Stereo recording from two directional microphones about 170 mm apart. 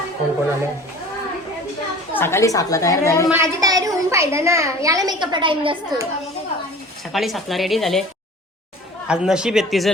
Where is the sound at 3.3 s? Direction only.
15° right (ahead or behind).